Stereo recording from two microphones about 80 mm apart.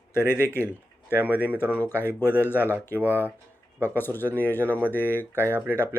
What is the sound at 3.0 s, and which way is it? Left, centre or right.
Speech, right.